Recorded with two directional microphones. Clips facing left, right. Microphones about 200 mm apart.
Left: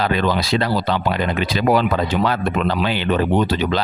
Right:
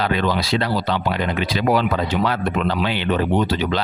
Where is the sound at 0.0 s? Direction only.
40° left (ahead or behind).